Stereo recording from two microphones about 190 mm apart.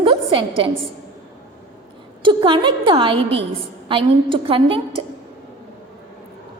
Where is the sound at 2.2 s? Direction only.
25° right (ahead or behind).